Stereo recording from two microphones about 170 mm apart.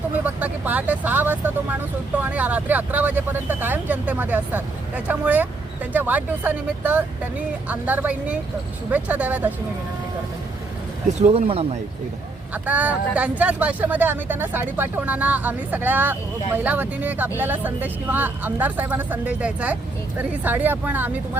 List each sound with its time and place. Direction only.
0.3 s speech: 10° right (ahead or behind)
11.1 s speech: 35° right (ahead or behind)
12.6 s speech: 10° right (ahead or behind)